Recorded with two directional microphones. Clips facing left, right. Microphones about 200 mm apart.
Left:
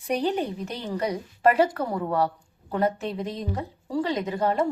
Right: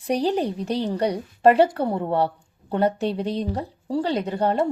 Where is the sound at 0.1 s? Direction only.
35° right (ahead or behind).